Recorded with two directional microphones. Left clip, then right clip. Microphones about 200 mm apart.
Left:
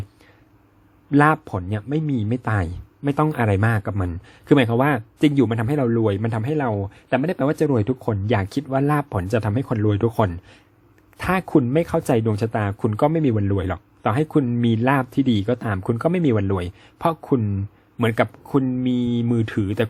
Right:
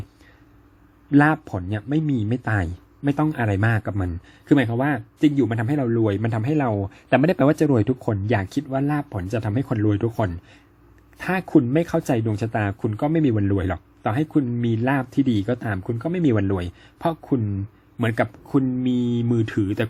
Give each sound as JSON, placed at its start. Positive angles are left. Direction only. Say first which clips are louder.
{"t": 1.1, "sound": "a man's voice", "louder": "left 1 dB", "side_deg": 10}
{"t": 5.5, "sound": "speech", "louder": "left 2 dB", "side_deg": 15}
{"t": 13.3, "sound": "speech", "louder": "even", "side_deg": 5}
{"t": 15.8, "sound": "a man's voice", "louder": "left 5 dB", "side_deg": 30}
{"t": 16.2, "sound": "speech", "louder": "even", "side_deg": 5}